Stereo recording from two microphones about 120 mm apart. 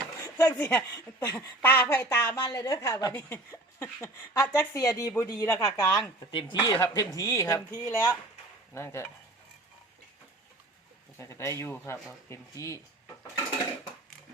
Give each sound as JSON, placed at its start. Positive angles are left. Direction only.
{"t": 0.3, "sound": "a woman's voice", "side_deg": 15}
{"t": 0.9, "sound": "a woman's voice", "side_deg": 25}
{"t": 2.3, "sound": "a woman's voice", "side_deg": 30}
{"t": 3.2, "sound": "speech", "side_deg": 20}
{"t": 6.3, "sound": "speech", "side_deg": 35}
{"t": 11.2, "sound": "speech", "side_deg": 25}